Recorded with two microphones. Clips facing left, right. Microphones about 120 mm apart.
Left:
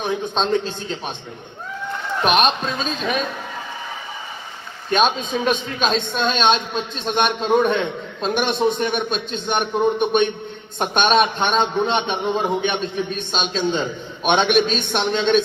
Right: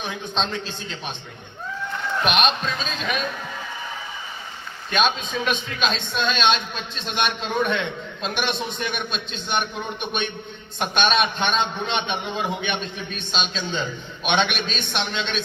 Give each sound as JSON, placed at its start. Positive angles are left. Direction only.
{"t": 0.4, "sound": "a man's voice", "side_deg": 40}
{"t": 2.2, "sound": "a man's voice", "side_deg": 40}
{"t": 4.9, "sound": "a man's voice", "side_deg": 40}